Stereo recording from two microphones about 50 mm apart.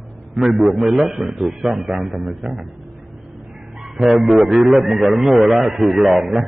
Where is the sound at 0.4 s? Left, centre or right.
Centre.